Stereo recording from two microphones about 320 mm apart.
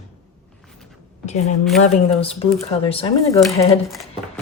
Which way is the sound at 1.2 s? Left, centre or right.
Left.